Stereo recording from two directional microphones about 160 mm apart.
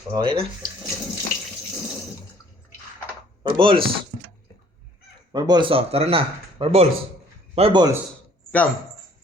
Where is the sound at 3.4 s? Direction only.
30° right (ahead or behind).